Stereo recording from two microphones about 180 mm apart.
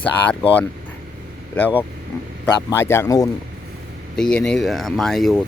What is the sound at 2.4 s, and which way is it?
Speech, 10° left (ahead or behind).